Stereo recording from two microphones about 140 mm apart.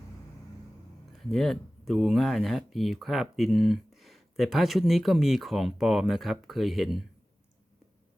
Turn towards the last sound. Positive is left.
turn(degrees=0)  # may be behind; listen again after turning